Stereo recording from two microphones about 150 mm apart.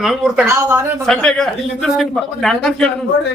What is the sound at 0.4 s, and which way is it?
Speech, 20° right (ahead or behind).